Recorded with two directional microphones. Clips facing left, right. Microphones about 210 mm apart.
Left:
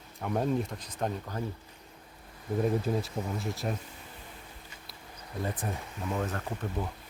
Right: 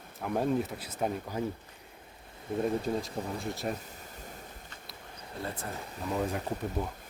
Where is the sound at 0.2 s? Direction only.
Centre (ahead or behind).